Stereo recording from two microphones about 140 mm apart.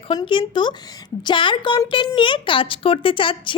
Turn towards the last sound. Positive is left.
turn(degrees=35)  # may be behind; listen again after turning